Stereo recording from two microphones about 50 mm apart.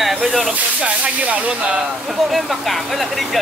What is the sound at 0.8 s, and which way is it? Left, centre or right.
Speech, right.